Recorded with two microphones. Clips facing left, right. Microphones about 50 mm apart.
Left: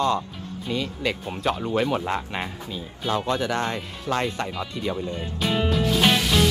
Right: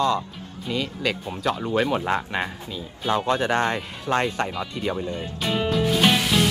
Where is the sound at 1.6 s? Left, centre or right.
Centre.